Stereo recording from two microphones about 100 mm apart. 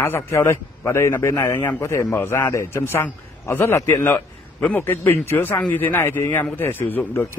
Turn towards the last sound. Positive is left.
turn(degrees=20)  # may be behind; listen again after turning